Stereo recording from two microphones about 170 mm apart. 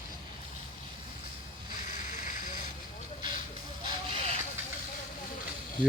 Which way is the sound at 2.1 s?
50° left (ahead or behind).